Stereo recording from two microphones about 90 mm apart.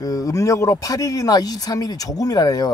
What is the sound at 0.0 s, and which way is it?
Speech, 40° left (ahead or behind).